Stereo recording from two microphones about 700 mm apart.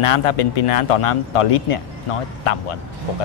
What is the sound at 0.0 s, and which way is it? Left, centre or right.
Speech, left.